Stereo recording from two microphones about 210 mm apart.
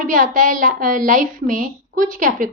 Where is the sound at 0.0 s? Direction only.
40° right (ahead or behind).